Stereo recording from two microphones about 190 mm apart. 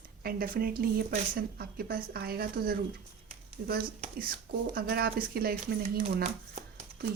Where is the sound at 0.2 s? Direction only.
50° right (ahead or behind).